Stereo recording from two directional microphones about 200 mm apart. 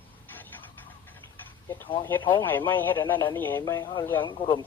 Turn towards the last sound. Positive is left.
turn(degrees=25)  # may be behind; listen again after turning